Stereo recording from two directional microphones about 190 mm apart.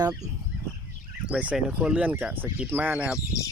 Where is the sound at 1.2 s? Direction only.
5° right (ahead or behind).